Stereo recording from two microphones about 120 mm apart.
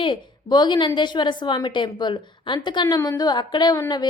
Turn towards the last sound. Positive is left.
turn(degrees=35)  # may be behind; listen again after turning